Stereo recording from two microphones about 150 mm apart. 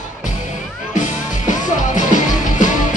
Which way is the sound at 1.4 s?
55° left (ahead or behind).